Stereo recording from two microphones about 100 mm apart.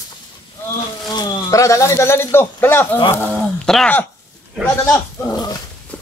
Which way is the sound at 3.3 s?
5° left (ahead or behind).